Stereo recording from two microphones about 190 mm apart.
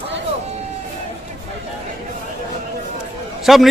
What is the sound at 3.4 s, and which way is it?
Speech, centre (ahead or behind).